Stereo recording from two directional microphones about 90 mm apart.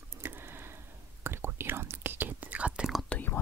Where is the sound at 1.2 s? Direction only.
25° right (ahead or behind); by 3.0 s 10° right (ahead or behind).